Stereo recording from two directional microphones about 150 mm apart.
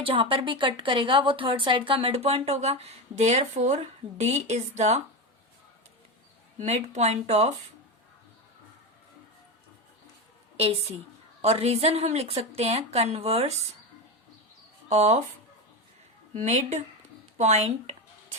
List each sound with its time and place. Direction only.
0.0 s a woman's voice: 35° right (ahead or behind)
6.6 s a woman's voice: 50° right (ahead or behind)
11.4 s a woman's voice: 45° right (ahead or behind)
14.8 s speech: 50° right (ahead or behind)
16.3 s a woman's voice: 50° right (ahead or behind)